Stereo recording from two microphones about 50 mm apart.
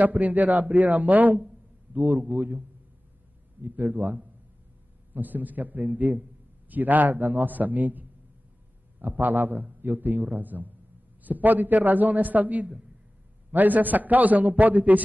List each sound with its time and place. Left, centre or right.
0.0 s a man's voice: right
3.6 s a man's voice: right